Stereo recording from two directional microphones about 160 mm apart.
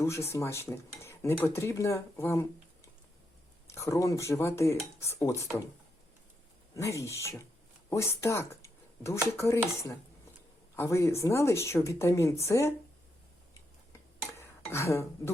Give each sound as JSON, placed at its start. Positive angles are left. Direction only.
{"t": 0.0, "sound": "a woman's voice", "side_deg": 15}
{"t": 3.7, "sound": "a woman's voice", "side_deg": 20}
{"t": 6.7, "sound": "a woman's voice", "side_deg": 20}
{"t": 14.3, "sound": "dishes", "side_deg": 15}